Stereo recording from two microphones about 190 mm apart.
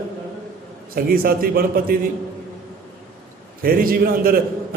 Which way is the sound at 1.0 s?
50° right (ahead or behind).